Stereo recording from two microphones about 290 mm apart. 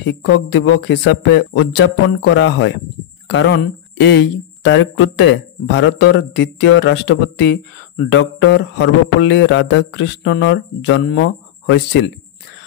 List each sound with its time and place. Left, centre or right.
0.0 s speech: left